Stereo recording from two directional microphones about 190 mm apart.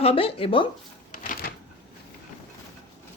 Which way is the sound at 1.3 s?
50° left (ahead or behind).